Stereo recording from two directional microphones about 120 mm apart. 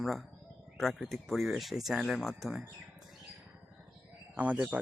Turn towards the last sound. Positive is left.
turn(degrees=-10)  # may be behind; listen again after turning